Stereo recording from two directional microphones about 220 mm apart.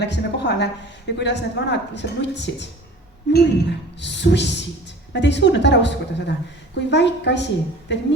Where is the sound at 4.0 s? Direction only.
55° left (ahead or behind).